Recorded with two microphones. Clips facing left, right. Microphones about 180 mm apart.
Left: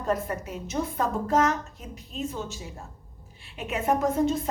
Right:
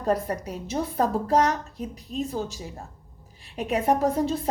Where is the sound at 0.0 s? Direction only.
35° right (ahead or behind).